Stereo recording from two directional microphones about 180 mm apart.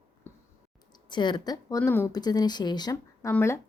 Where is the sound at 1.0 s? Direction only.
25° left (ahead or behind).